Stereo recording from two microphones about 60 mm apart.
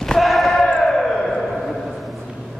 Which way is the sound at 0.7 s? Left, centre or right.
Centre.